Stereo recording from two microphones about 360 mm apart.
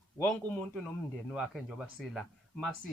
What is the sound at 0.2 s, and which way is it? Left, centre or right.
Speech, centre.